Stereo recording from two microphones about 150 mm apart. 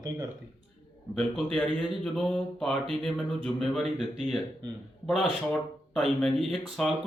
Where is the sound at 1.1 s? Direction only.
Centre (ahead or behind).